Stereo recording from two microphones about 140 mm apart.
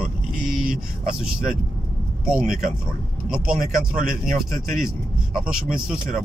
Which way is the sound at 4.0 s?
80° right.